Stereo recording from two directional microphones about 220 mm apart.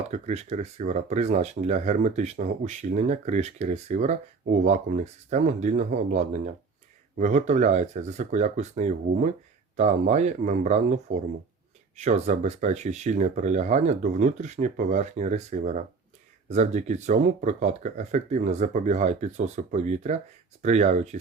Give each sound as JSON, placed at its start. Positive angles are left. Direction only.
{"t": 0.1, "sound": "speech", "side_deg": -30}